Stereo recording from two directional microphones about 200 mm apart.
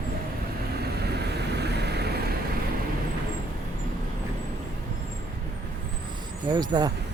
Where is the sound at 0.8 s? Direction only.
55° right (ahead or behind).